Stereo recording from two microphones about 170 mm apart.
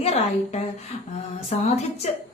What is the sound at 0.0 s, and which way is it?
A woman's voice, 40° left (ahead or behind).